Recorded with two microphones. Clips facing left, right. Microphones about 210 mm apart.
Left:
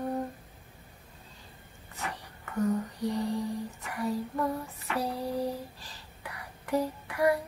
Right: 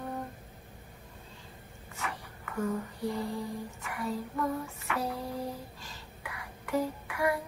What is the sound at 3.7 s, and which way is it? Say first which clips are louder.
Child singing: left 2 dB; 35° left (ahead or behind).